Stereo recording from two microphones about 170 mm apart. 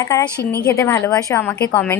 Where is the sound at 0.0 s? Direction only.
20° left (ahead or behind).